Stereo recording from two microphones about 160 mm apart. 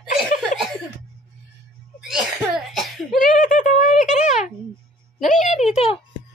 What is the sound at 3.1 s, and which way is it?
A child's voice, 55° left (ahead or behind).